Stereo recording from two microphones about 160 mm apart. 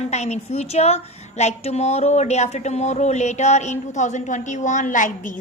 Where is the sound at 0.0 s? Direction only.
45° left (ahead or behind).